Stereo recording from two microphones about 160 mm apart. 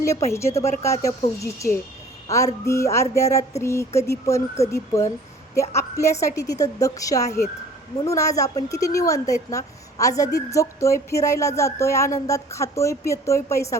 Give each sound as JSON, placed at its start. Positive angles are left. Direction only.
{"t": 0.3, "sound": "a woman's voice", "side_deg": 20}